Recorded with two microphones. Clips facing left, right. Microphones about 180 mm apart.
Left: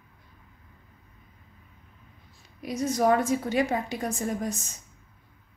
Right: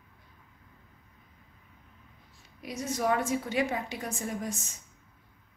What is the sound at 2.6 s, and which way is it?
A woman's voice, 40° left (ahead or behind).